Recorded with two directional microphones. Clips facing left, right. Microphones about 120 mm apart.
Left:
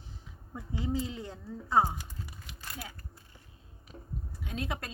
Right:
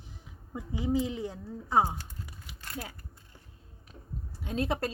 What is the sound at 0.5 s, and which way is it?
Speech, 10° right (ahead or behind).